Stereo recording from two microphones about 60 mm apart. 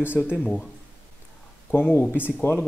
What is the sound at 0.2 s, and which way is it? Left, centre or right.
Speech, left.